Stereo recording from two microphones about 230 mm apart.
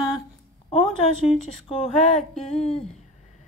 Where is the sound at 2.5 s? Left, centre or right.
Left.